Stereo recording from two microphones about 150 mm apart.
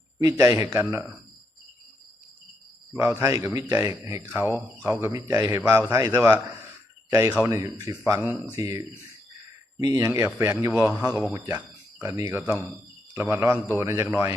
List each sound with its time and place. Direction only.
0.2 s speech: 20° right (ahead or behind)
2.9 s speech: 15° right (ahead or behind)
11.3 s a sound: 25° right (ahead or behind)
12.1 s speech: 15° right (ahead or behind)